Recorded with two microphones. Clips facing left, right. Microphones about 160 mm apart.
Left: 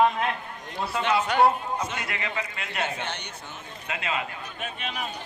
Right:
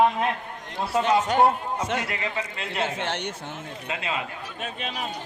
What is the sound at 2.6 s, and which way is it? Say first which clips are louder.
Speech: right 4 dB; 30° right (ahead or behind).